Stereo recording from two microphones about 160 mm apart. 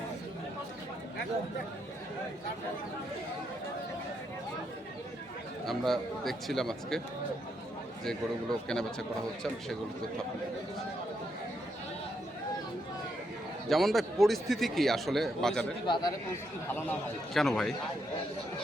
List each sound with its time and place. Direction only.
5.6 s speech: centre (ahead or behind)
8.0 s speech: 5° left (ahead or behind)
13.7 s speech: centre (ahead or behind)
15.9 s speech: 25° left (ahead or behind)
17.3 s speech: centre (ahead or behind)